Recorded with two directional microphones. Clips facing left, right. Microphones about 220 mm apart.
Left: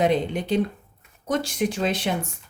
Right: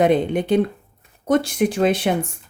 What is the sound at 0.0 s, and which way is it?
Speech, 55° right (ahead or behind).